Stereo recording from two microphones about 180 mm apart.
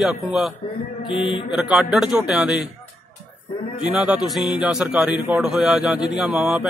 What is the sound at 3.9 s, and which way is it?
A man's voice, 5° right (ahead or behind).